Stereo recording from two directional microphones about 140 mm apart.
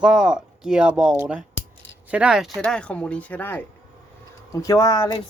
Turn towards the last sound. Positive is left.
turn(degrees=30)  # may be behind; listen again after turning